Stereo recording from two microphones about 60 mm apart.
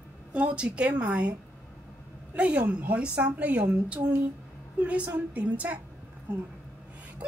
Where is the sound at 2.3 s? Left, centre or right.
Right.